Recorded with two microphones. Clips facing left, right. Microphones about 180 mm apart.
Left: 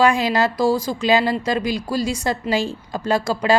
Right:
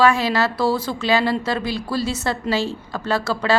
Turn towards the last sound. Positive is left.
turn(degrees=15)  # may be behind; listen again after turning